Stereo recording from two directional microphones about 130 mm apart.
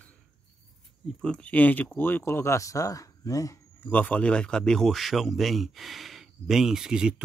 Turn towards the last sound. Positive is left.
turn(degrees=-5)  # may be behind; listen again after turning